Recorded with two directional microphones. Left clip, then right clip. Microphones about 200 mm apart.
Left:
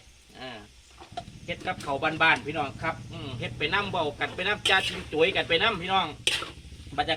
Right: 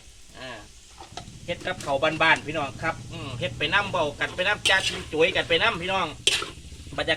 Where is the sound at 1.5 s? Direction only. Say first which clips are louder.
Right 3 dB; 5° right (ahead or behind).